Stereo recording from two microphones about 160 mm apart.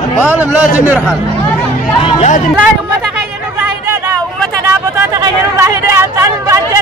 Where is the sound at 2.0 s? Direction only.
45° left (ahead or behind).